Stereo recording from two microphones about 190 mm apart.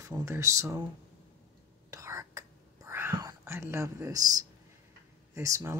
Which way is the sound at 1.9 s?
15° right (ahead or behind).